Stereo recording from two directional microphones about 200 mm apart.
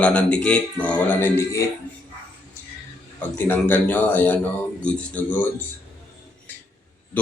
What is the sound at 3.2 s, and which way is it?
Speech, 10° left (ahead or behind).